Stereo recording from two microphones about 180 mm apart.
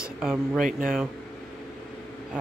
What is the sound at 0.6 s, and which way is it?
Speech, 50° right (ahead or behind).